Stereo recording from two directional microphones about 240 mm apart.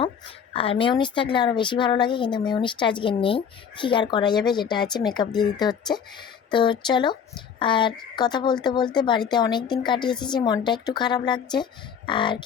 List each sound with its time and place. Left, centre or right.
0.0 s speech: left